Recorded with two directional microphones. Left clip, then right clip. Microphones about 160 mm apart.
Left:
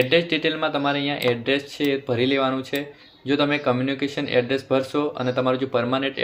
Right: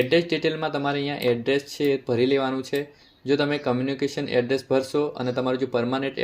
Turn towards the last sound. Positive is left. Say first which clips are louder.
# left 3 dB
turn(degrees=-45)  # may be behind; listen again after turning